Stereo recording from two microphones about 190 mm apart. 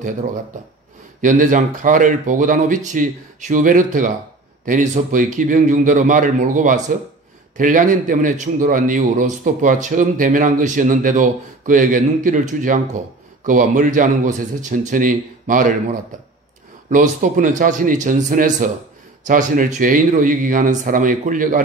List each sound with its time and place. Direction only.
1.2 s a man's voice: 40° right (ahead or behind)